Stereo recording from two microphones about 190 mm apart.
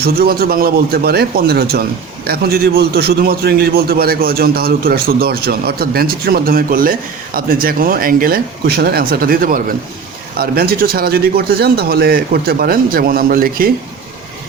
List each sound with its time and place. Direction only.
0.0 s a man's voice: 50° right (ahead or behind)